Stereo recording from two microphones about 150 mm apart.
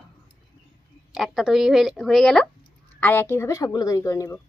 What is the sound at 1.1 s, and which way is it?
Speech, centre (ahead or behind).